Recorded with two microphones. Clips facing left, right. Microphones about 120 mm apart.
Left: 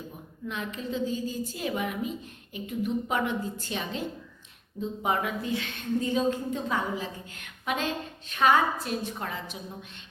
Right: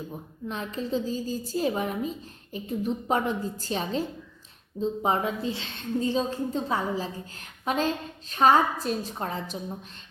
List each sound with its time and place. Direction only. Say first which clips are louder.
0.4 s a woman's voice: right 2 dB; 35° right (ahead or behind)